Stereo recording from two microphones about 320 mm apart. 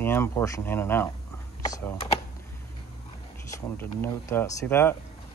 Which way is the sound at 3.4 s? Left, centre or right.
Centre.